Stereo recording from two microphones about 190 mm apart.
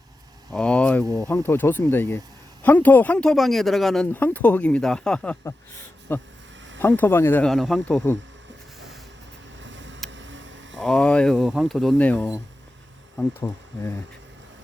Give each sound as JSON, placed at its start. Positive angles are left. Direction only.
{"t": 0.5, "sound": "speech", "side_deg": 5}
{"t": 9.6, "sound": "a sound", "side_deg": -75}
{"t": 10.8, "sound": "speech", "side_deg": 5}